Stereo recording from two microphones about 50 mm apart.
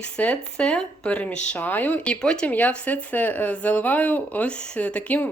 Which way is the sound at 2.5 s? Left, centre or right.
Left.